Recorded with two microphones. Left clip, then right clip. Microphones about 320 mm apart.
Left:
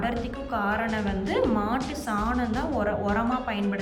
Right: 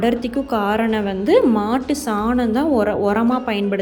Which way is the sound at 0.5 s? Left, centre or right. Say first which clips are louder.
Right 7 dB; right.